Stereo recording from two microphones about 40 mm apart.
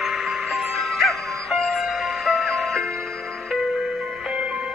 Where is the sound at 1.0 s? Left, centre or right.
Centre.